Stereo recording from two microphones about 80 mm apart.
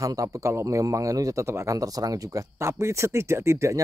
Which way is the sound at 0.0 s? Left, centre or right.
Right.